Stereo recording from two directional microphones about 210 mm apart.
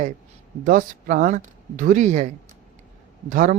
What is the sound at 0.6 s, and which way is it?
A man's voice, 40° right (ahead or behind).